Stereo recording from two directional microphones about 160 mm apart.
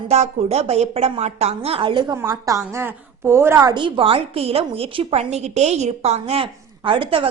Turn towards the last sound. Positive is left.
turn(degrees=-35)  # may be behind; listen again after turning